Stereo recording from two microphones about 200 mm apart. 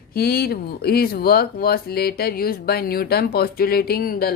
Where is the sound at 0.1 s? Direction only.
50° left (ahead or behind).